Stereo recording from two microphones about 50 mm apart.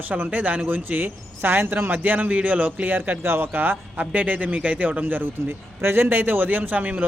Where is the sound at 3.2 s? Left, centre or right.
Right.